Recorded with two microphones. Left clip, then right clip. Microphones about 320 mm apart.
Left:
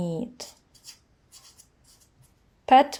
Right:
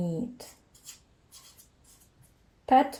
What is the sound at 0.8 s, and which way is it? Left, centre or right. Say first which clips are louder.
Rub: left 1 dB; centre.